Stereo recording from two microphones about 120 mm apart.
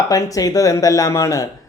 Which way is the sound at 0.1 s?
30° left (ahead or behind).